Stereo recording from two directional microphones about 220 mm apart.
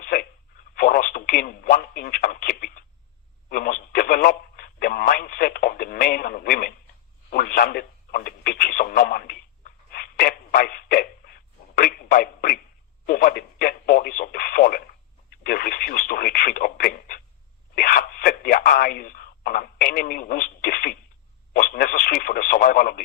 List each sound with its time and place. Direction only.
0.0 s telephone: 40° left (ahead or behind)
0.8 s speech: 40° left (ahead or behind)
3.5 s telephone: 40° left (ahead or behind)
7.3 s radio: 40° left (ahead or behind)
15.3 s telephone: 45° left (ahead or behind)
17.7 s a sound: 40° left (ahead or behind)
21.5 s radio: 40° left (ahead or behind)